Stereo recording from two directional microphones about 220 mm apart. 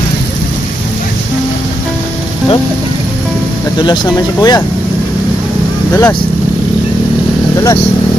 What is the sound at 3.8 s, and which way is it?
Speech, 20° left (ahead or behind).